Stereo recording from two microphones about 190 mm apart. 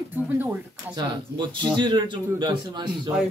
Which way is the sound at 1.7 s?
25° right (ahead or behind).